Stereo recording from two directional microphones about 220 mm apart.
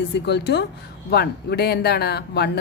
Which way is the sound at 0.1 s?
50° left (ahead or behind).